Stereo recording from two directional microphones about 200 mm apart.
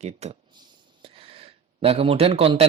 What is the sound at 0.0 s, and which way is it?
A man's voice, 35° right (ahead or behind).